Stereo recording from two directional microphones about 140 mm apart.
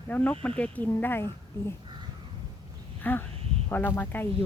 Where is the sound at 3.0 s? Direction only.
15° left (ahead or behind).